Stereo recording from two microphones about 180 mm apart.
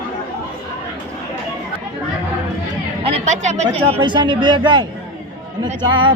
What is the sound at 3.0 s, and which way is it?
A woman's voice, 35° right (ahead or behind).